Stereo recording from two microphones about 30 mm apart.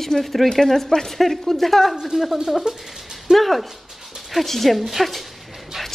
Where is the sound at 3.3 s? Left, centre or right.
Centre.